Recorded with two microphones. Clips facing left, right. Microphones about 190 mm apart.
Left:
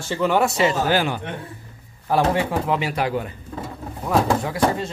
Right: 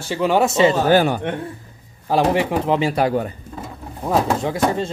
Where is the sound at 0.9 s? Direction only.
45° right (ahead or behind).